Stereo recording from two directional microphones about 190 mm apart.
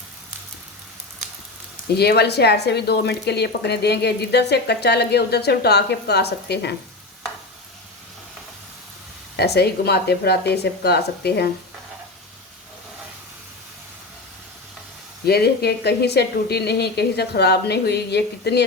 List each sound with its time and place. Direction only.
2.0 s speech: 60° left (ahead or behind)
9.3 s speech: 60° left (ahead or behind)
15.3 s speech: 60° left (ahead or behind)